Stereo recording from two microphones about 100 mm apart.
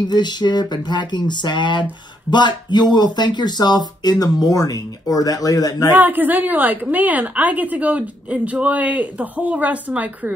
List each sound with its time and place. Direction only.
0.1 s speech: 45° left (ahead or behind)
5.9 s a woman's voice: 20° right (ahead or behind)